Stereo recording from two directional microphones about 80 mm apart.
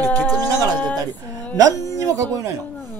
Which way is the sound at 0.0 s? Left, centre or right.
Left.